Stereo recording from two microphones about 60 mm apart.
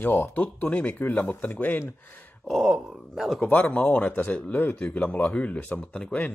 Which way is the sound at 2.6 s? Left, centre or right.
Centre.